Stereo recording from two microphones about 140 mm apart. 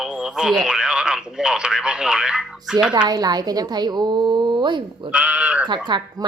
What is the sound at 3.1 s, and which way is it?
Speech, 30° right (ahead or behind).